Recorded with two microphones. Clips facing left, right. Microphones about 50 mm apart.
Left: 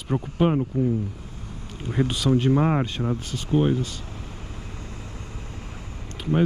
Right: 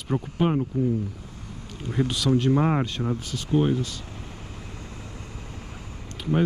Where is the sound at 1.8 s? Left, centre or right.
Centre.